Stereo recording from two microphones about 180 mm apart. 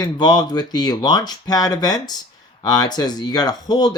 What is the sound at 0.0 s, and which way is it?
Speech, 25° left (ahead or behind).